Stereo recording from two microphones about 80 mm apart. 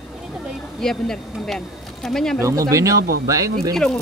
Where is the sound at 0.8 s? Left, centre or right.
Centre.